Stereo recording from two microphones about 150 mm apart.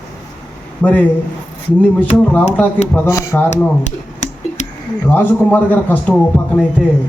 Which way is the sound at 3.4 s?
50° left (ahead or behind).